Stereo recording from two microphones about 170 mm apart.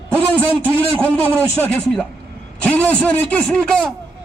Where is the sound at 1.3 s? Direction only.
10° right (ahead or behind).